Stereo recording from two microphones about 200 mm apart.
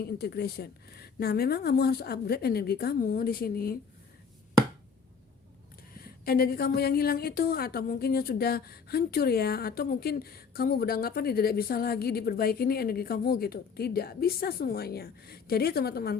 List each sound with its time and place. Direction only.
0.0 s a woman's voice: 50° left (ahead or behind)
6.0 s a woman's voice: 50° left (ahead or behind)